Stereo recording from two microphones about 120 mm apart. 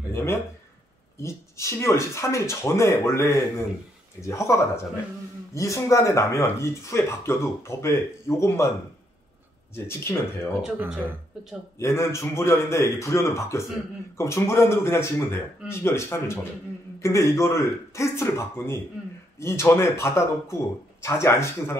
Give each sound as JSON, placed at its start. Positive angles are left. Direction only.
{"t": 0.1, "sound": "speech", "side_deg": 20}
{"t": 9.8, "sound": "speech", "side_deg": 20}
{"t": 12.0, "sound": "speech", "side_deg": 25}